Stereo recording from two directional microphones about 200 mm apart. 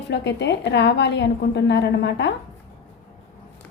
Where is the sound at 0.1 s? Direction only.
60° left (ahead or behind).